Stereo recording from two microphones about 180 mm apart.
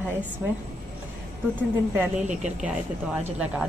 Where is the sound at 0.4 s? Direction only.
10° right (ahead or behind).